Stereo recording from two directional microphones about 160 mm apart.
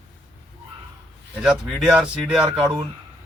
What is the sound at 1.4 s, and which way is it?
Speech, 5° right (ahead or behind).